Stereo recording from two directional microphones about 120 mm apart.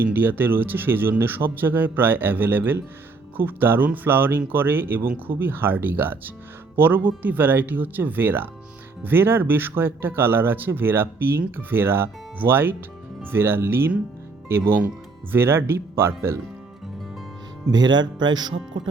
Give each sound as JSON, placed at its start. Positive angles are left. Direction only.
{"t": 0.1, "sound": "speech", "side_deg": -15}
{"t": 17.7, "sound": "speech", "side_deg": -35}